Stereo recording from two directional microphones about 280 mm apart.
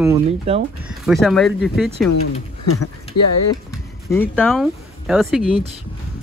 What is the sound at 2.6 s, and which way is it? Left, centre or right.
Speech, left.